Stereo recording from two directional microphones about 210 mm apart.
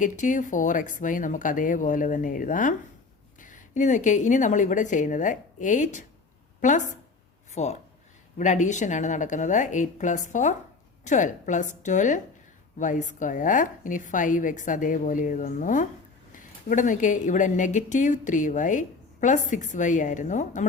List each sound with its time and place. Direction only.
0.0 s a woman's voice: 35° left (ahead or behind)